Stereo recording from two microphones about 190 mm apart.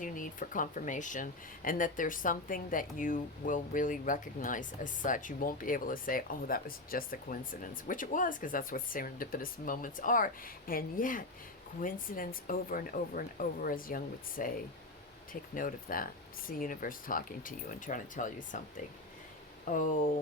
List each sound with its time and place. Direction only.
0.0 s speech: 45° left (ahead or behind)
19.7 s speech: 40° left (ahead or behind)